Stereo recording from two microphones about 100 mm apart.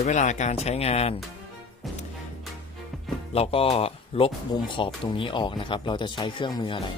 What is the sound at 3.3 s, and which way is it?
Speech, 75° left (ahead or behind).